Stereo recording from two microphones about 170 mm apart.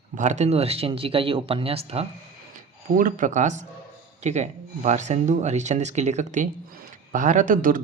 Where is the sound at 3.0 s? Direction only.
50° right (ahead or behind).